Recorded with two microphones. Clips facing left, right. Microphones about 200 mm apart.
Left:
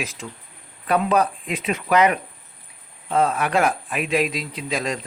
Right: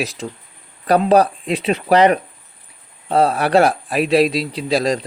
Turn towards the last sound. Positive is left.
turn(degrees=-35)  # may be behind; listen again after turning